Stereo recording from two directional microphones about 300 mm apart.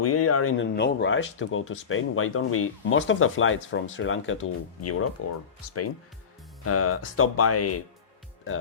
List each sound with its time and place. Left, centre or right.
0.0 s speech: left
6.7 s speech: left